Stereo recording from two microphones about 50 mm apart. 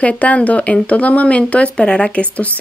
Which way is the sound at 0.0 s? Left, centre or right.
Left.